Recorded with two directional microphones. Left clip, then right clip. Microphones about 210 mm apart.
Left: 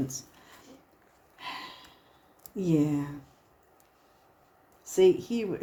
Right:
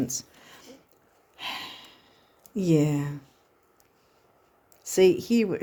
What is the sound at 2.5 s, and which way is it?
Speech, 55° right (ahead or behind).